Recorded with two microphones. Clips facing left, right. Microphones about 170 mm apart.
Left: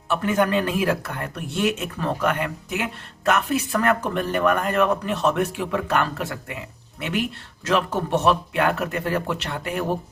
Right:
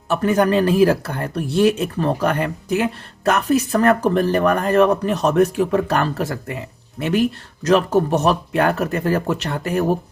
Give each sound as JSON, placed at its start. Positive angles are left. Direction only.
{"t": 0.1, "sound": "speech", "side_deg": -40}